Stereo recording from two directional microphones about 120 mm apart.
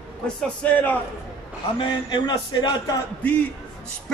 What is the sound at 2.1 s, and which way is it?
Speech, 35° left (ahead or behind).